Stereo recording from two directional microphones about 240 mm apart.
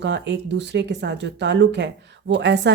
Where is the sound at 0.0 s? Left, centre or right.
Right.